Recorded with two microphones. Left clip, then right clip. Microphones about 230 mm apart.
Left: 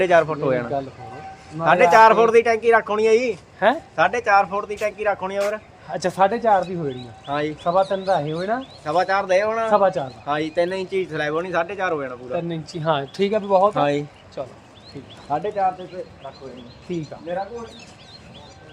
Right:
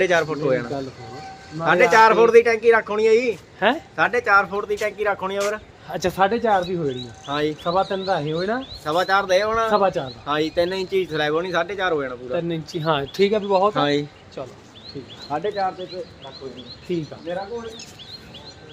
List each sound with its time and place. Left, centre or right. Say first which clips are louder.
0.0 s speech: left 2 dB; left
3.6 s speech: left 1 dB; centre
3.9 s speech: right 1 dB; left
4.6 s speech: even; centre
5.9 s speech: left 1 dB; centre
7.3 s speech: right 1 dB; centre
7.6 s speech: left 2 dB; centre
8.8 s speech: right 1 dB; centre
9.7 s speech: left 2 dB; centre
10.2 s speech: right 1 dB; centre
12.3 s speech: right 2 dB; centre
13.7 s speech: even; centre
14.4 s speech: left 2 dB; centre
15.3 s speech: left 2 dB; left